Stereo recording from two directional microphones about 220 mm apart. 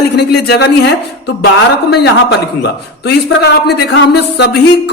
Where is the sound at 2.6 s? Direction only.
50° left (ahead or behind).